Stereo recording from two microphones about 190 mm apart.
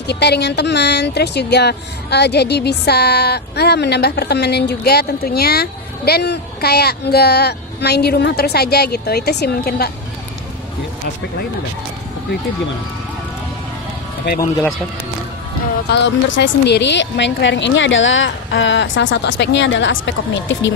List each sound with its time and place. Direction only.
0.0 s speech: 60° left (ahead or behind)
14.4 s speech: 15° left (ahead or behind)
15.9 s a woman's voice: 65° left (ahead or behind)